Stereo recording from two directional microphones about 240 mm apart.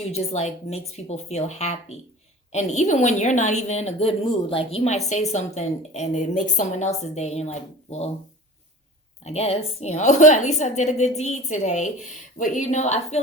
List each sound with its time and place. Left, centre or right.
0.1 s a woman's voice: left
9.2 s a woman's voice: left